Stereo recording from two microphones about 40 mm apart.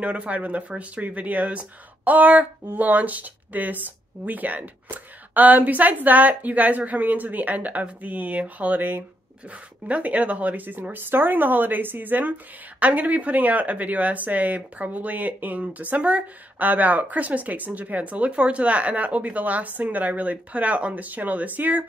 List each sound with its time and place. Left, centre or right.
0.0 s a woman's voice: right
9.8 s a woman's voice: right